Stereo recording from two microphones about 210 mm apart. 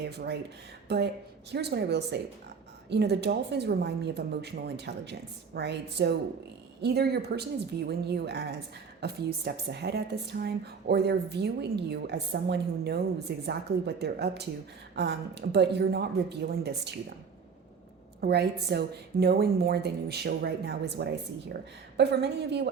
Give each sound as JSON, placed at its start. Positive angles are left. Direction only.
{"t": 0.0, "sound": "a woman's voice", "side_deg": -50}
{"t": 18.2, "sound": "a woman's voice", "side_deg": -50}